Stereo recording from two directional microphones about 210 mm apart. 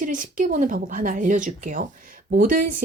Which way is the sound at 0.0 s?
40° right (ahead or behind).